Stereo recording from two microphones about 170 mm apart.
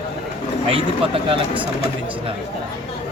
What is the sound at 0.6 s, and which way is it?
Speech, 35° right (ahead or behind).